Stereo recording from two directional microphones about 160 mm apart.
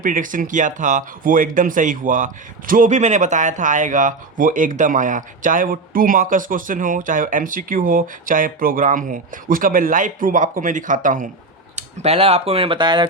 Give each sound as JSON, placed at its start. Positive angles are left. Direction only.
{"t": 0.0, "sound": "speech", "side_deg": -55}
{"t": 11.8, "sound": "speech", "side_deg": -40}